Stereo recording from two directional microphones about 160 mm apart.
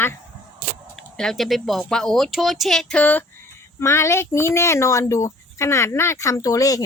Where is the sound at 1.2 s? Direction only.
Centre (ahead or behind).